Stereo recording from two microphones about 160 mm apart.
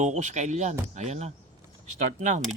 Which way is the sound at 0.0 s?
50° right (ahead or behind).